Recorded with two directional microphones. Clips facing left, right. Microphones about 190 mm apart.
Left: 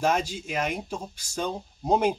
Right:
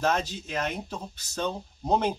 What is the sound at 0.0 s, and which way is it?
Speech, 10° left (ahead or behind).